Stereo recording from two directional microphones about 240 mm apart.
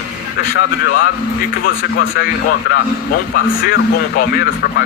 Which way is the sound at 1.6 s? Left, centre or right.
Left.